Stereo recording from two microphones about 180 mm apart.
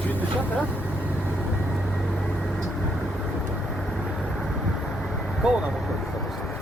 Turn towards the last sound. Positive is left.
turn(degrees=-5)  # may be behind; listen again after turning